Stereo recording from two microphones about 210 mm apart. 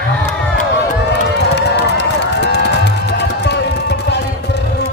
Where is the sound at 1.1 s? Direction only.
55° left (ahead or behind).